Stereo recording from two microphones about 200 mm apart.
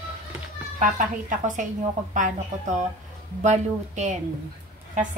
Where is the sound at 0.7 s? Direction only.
40° right (ahead or behind).